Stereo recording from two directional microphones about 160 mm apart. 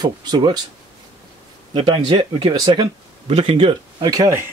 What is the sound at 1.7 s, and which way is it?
Speech, 30° right (ahead or behind).